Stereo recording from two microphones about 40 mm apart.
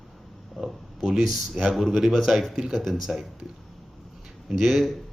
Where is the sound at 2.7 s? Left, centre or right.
Centre.